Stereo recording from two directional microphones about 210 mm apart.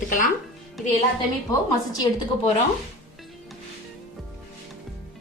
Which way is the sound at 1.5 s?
15° left (ahead or behind).